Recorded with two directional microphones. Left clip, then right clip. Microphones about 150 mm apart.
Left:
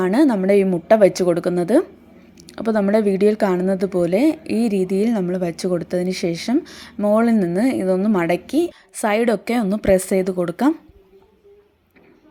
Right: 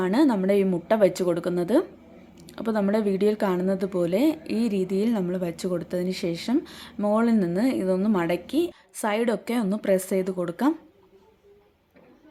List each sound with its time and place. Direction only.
0.0 s a woman's voice: 25° left (ahead or behind)